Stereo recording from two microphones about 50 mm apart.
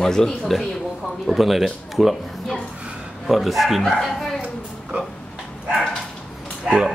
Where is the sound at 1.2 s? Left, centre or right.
Centre.